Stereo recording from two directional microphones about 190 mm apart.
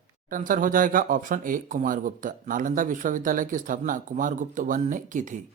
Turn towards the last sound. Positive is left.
turn(degrees=-40)  # may be behind; listen again after turning